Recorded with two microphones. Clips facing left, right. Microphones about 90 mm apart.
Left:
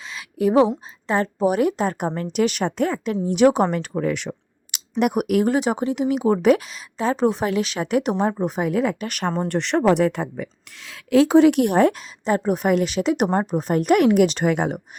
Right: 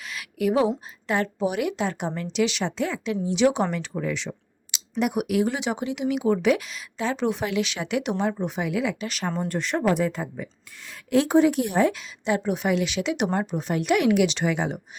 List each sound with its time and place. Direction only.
0.0 s a sound: 30° left (ahead or behind)
1.0 s a woman's voice: 35° left (ahead or behind); by 9.3 s 55° left (ahead or behind)
9.5 s a woman's voice: 65° left (ahead or behind)